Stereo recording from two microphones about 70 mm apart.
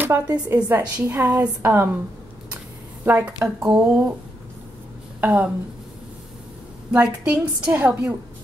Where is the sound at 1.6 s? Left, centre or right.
Right.